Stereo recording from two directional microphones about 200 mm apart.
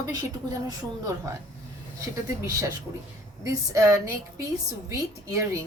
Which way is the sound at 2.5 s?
15° right (ahead or behind).